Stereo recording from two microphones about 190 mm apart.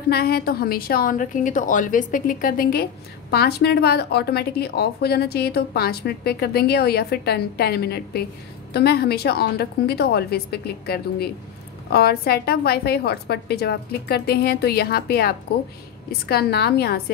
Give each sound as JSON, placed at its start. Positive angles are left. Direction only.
{"t": 0.1, "sound": "a woman's voice", "side_deg": 55}